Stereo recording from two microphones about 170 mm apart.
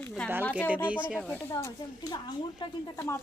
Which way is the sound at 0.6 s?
10° right (ahead or behind).